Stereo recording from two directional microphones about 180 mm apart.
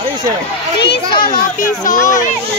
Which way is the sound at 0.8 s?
25° left (ahead or behind).